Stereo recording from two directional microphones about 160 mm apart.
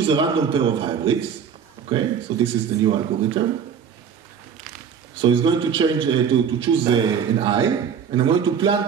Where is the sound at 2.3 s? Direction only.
30° right (ahead or behind).